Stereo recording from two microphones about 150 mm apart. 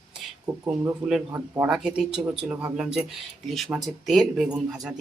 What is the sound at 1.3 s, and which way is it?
Speech, 20° right (ahead or behind).